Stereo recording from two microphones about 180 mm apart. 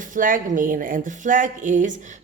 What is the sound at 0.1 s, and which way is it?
Speech, 50° right (ahead or behind).